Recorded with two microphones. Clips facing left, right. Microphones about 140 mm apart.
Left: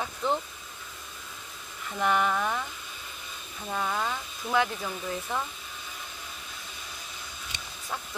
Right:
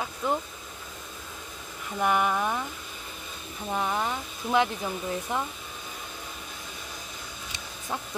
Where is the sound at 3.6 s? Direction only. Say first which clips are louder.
Right 2 dB; 15° right (ahead or behind).